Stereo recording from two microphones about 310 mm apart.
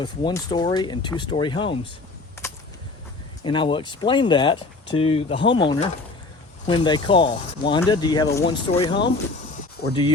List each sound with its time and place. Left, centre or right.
0.0 s speech: centre
2.4 s a sound: centre
3.4 s speech: centre